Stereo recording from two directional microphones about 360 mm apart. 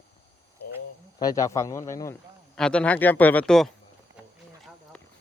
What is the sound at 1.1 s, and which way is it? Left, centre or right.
A man's voice, centre.